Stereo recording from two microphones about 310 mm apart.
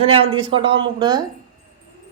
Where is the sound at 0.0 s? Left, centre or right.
Centre.